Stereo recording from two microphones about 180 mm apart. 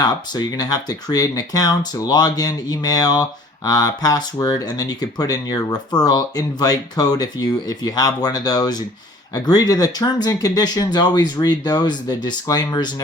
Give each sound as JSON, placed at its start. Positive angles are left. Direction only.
{"t": 0.0, "sound": "speech", "side_deg": 20}